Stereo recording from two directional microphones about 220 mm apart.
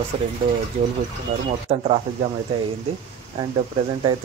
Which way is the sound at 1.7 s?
30° right (ahead or behind).